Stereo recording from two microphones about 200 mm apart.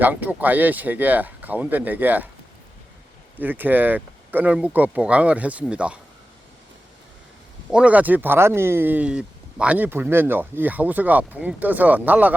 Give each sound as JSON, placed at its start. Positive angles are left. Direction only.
{"t": 0.0, "sound": "speech", "side_deg": -10}
{"t": 3.3, "sound": "speech", "side_deg": -10}
{"t": 7.7, "sound": "speech", "side_deg": -5}